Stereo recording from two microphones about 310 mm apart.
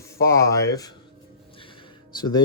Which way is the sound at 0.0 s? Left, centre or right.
Centre.